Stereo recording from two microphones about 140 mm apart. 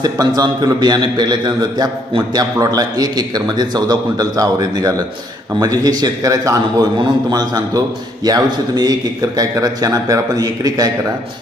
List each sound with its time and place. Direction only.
0.0 s a man's voice: 30° right (ahead or behind)